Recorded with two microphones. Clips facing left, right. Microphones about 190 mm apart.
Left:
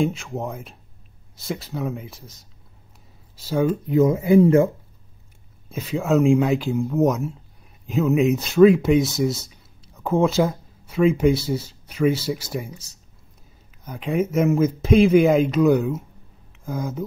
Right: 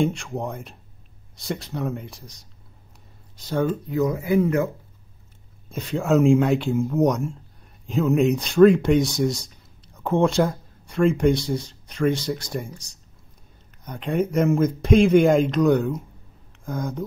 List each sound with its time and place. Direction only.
0.0 s speech: centre (ahead or behind)
3.8 s speech: 25° left (ahead or behind)
5.7 s speech: 5° left (ahead or behind)